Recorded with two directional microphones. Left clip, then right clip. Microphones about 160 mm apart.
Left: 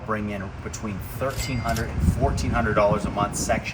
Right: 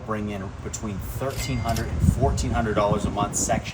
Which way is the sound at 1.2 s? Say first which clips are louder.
Left 1 dB; centre (ahead or behind).